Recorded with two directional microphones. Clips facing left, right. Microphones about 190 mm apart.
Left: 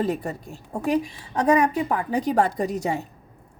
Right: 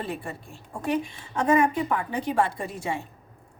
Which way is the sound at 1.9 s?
40° left (ahead or behind).